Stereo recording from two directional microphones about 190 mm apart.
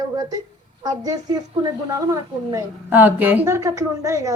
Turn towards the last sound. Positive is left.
turn(degrees=-15)  # may be behind; listen again after turning